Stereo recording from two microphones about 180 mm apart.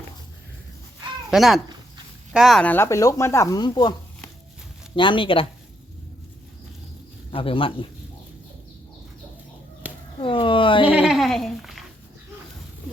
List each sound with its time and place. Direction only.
1.3 s speech: centre (ahead or behind); by 3.9 s 25° left (ahead or behind)
4.9 s speech: 25° left (ahead or behind)
7.3 s speech: 30° left (ahead or behind)
9.8 s a sound: 10° right (ahead or behind)
10.2 s speech: 30° left (ahead or behind)
10.8 s speech: 5° right (ahead or behind)